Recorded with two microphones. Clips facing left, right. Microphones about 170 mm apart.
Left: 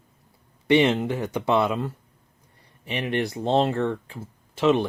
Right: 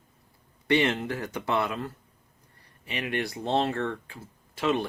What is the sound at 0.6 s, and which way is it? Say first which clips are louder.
Speech: left 5 dB; 20° left (ahead or behind).